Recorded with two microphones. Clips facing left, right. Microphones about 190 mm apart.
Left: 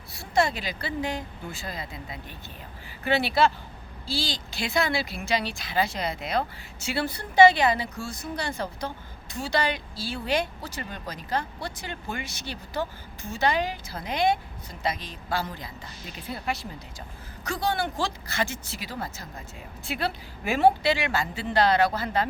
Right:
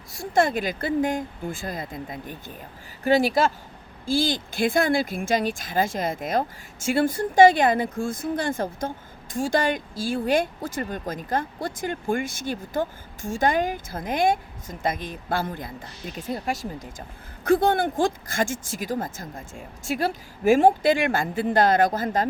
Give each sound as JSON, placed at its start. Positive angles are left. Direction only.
{"t": 0.1, "sound": "speech", "side_deg": -50}